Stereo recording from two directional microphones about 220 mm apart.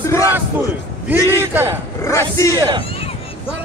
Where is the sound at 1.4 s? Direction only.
10° right (ahead or behind).